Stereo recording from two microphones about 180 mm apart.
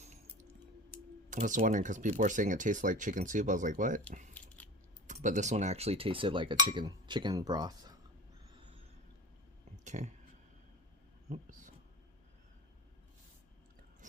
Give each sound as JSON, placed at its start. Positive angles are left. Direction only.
{"t": 1.3, "sound": "speech", "side_deg": -45}
{"t": 4.4, "sound": "biting", "side_deg": 10}
{"t": 5.2, "sound": "speech", "side_deg": -40}
{"t": 9.8, "sound": "speech", "side_deg": -40}
{"t": 11.3, "sound": "a sound", "side_deg": -45}